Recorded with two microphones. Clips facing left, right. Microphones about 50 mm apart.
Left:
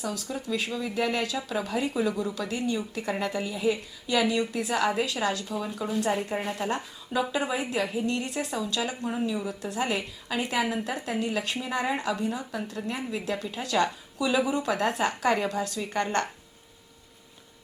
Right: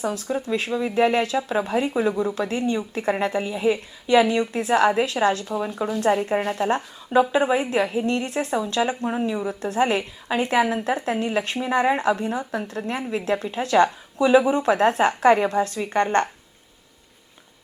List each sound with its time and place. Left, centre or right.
0.0 s a woman's voice: right